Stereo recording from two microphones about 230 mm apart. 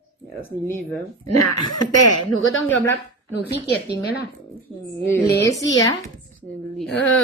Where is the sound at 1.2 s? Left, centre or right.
Left.